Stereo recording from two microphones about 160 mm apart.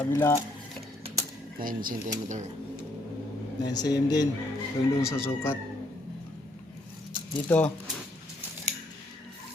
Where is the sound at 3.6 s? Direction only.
25° left (ahead or behind).